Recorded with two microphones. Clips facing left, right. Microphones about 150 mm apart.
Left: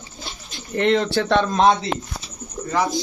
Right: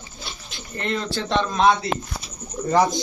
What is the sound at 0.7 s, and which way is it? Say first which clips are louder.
Speech: left 8 dB; 75° left (ahead or behind).